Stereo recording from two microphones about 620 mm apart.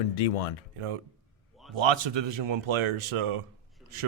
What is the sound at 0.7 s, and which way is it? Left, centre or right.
Speech, right.